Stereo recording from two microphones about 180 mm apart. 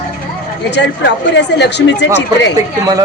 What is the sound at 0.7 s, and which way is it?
Speech, 70° left (ahead or behind).